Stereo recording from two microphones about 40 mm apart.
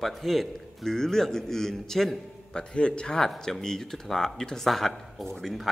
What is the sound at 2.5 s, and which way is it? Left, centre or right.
A man's voice, left.